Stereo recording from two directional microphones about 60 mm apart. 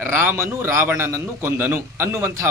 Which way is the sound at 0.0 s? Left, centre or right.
Right.